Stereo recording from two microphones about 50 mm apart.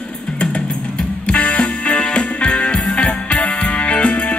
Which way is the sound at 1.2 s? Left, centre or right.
Left.